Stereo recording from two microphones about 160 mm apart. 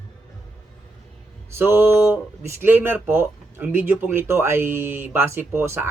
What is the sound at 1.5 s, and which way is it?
Speech, 15° right (ahead or behind).